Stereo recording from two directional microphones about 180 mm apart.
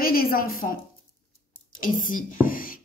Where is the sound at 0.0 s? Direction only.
55° left (ahead or behind).